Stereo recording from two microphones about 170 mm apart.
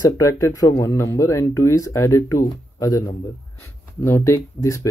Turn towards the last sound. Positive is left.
turn(degrees=15)  # may be behind; listen again after turning